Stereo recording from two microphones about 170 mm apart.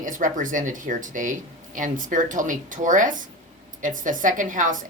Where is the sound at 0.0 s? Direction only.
50° right (ahead or behind).